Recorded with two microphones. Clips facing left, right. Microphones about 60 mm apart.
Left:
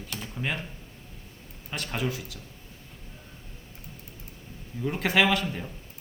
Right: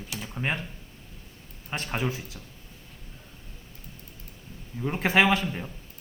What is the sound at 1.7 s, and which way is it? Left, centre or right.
Speech, right.